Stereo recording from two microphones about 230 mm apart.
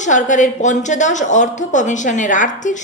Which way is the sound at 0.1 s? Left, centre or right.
Left.